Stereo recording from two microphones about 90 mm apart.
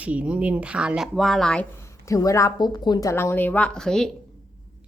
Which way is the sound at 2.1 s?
40° left (ahead or behind).